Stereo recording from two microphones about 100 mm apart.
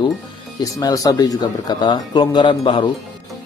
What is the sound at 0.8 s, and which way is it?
Speech, 35° left (ahead or behind).